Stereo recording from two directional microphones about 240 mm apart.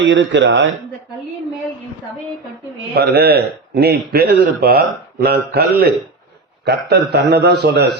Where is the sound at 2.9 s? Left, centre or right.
Right.